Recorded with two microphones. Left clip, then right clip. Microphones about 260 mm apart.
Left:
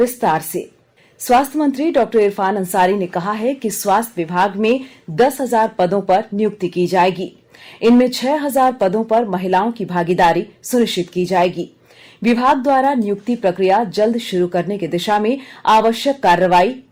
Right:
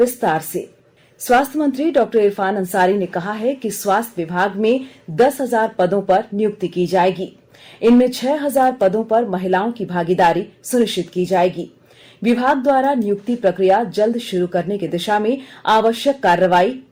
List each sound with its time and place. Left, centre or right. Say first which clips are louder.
0.0 s a woman's voice: left 1 dB; left